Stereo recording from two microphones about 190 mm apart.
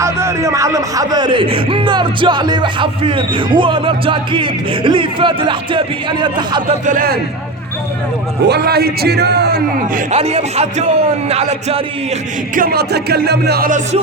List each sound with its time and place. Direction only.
0.0 s speech: 15° right (ahead or behind)
6.8 s a man's voice: 50° right (ahead or behind)
8.4 s a man's voice: 60° right (ahead or behind)
10.2 s a man's voice: 35° right (ahead or behind)
12.5 s a man's voice: 50° right (ahead or behind)